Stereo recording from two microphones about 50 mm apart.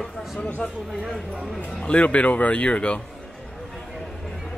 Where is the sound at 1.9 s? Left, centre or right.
Left.